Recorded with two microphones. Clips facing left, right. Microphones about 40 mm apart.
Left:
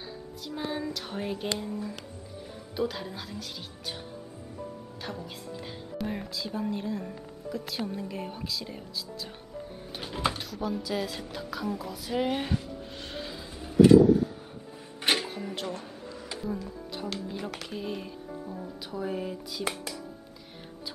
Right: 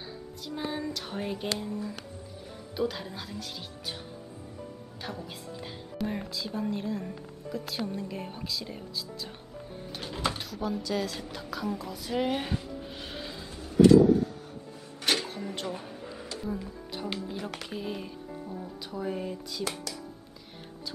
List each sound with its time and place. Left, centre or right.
0.5 s speech: centre
5.2 s speech: centre
13.6 s vehicle: centre
13.9 s vehicle: centre
15.0 s a sound: centre
15.2 s a sound: centre
15.7 s speech: centre
16.0 s a sound: centre
17.3 s speech: centre